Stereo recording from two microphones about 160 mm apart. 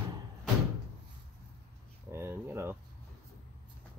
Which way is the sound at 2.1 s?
15° right (ahead or behind).